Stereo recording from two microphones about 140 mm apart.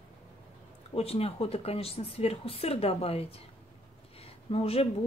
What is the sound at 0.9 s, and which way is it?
Speech, 45° left (ahead or behind).